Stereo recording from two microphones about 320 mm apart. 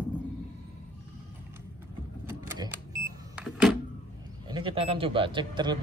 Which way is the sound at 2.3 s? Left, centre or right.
Centre.